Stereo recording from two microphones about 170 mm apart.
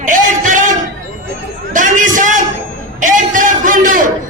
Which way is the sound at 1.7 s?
50° right (ahead or behind).